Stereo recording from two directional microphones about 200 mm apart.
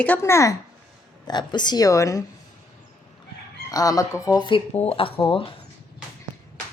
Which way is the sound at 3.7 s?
15° left (ahead or behind).